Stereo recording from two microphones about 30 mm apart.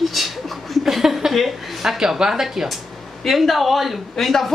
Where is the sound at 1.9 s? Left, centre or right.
Centre.